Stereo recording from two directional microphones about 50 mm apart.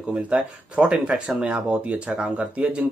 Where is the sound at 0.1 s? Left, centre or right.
Right.